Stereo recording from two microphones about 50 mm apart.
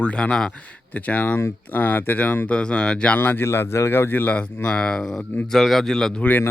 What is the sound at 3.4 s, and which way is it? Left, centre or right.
Speech, left.